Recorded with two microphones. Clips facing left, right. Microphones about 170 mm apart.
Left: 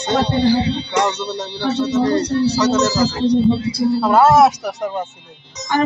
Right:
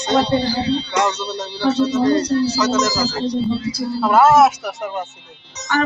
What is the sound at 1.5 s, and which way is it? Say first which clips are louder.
Speech: right 2 dB; 60° left (ahead or behind).